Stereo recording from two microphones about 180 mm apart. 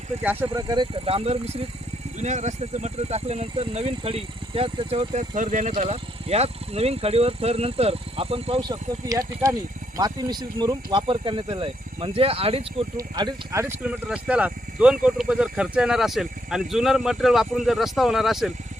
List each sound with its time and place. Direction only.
0.5 s speech: 25° right (ahead or behind)
13.0 s speech: 20° right (ahead or behind); by 18.5 s centre (ahead or behind)